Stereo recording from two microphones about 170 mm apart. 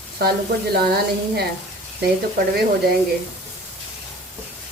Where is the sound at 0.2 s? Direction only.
65° right (ahead or behind).